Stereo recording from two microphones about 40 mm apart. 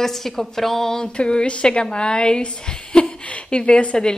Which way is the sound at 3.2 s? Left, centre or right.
Left.